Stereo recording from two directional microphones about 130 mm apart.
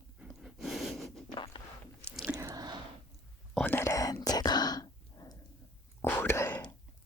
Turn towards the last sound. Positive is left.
turn(degrees=20)  # may be behind; listen again after turning